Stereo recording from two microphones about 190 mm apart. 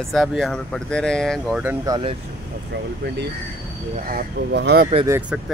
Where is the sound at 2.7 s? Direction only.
65° right (ahead or behind).